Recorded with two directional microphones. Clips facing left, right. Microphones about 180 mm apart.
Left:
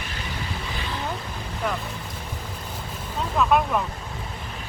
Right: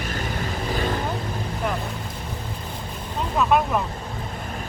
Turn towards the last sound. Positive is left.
turn(degrees=-5)  # may be behind; listen again after turning